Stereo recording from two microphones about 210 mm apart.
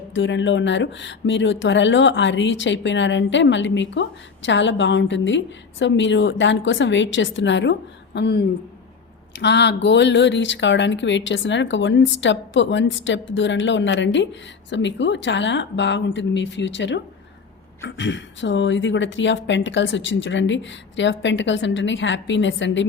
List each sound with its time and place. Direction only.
0.1 s speech: 60° left (ahead or behind)